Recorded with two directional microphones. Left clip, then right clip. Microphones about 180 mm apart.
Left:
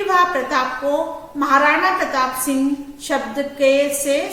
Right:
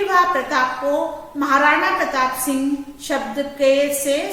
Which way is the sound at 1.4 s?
20° left (ahead or behind).